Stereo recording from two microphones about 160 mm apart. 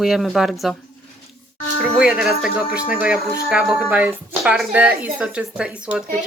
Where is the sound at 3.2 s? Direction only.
70° right (ahead or behind).